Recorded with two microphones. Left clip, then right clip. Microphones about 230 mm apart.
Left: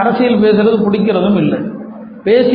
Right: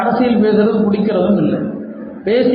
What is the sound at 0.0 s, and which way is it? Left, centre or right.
A man's voice, left.